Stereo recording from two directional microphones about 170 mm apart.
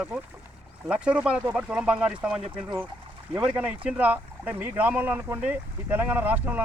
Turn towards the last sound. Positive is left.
turn(degrees=-10)  # may be behind; listen again after turning